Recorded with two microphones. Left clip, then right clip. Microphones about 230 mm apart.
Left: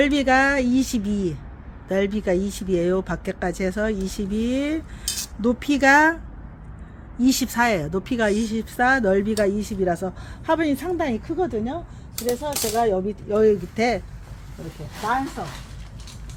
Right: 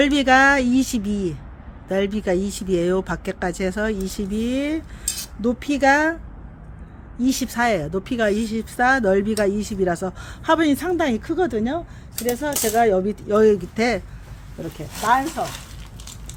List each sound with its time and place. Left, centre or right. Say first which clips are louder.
0.0 s speech: right 3 dB; centre
7.2 s speech: left 1 dB; centre
15.0 s speech: right 5 dB; right